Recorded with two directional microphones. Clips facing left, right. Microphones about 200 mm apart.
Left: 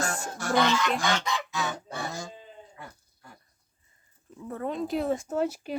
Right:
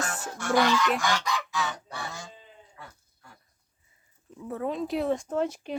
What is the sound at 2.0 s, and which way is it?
Sheep, 40° left (ahead or behind).